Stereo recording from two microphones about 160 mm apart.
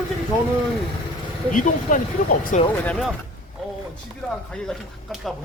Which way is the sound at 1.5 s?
55° left (ahead or behind).